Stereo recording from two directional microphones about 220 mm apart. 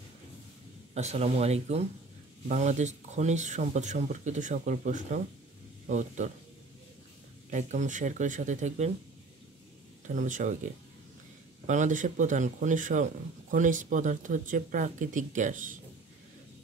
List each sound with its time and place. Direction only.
0.9 s speech: 30° right (ahead or behind)
7.5 s speech: 35° right (ahead or behind)
10.0 s speech: 35° right (ahead or behind)